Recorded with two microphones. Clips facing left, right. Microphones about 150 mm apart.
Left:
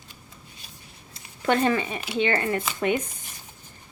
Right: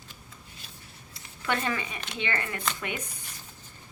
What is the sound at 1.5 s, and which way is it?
A woman's voice, 35° left (ahead or behind).